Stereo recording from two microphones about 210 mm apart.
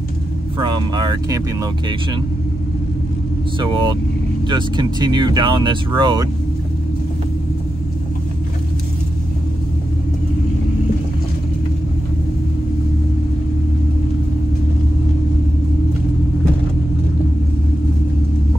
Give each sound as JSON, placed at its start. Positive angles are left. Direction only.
{"t": 0.6, "sound": "speech", "side_deg": -20}
{"t": 3.5, "sound": "speech", "side_deg": -20}